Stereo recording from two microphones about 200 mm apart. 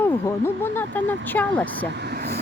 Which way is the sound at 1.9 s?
55° right (ahead or behind).